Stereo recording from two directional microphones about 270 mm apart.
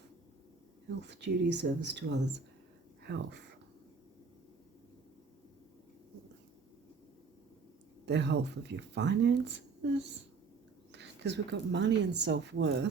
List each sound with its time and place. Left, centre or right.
1.0 s speech: right
8.0 s speech: right